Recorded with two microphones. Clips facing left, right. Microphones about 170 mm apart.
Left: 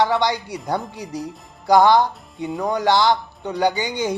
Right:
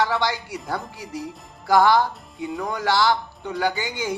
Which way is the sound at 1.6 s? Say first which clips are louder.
Left 3 dB; 20° left (ahead or behind).